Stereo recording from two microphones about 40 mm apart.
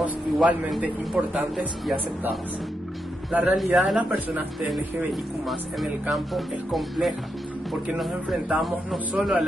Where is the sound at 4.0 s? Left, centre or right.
Right.